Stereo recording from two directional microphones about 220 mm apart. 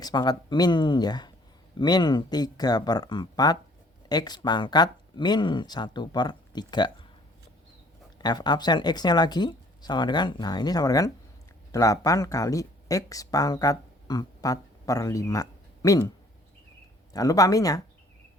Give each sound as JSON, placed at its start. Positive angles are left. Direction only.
{"t": 0.0, "sound": "speech", "side_deg": 20}
{"t": 8.2, "sound": "speech", "side_deg": 20}
{"t": 17.1, "sound": "speech", "side_deg": 15}